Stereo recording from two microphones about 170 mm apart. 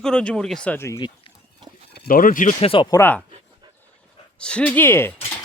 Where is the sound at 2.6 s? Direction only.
30° left (ahead or behind).